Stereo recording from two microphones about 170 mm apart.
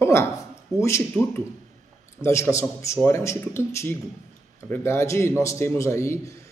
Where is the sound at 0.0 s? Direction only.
15° left (ahead or behind).